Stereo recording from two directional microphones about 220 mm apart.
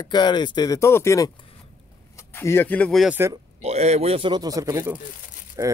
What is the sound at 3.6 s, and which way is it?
Speech, 30° right (ahead or behind).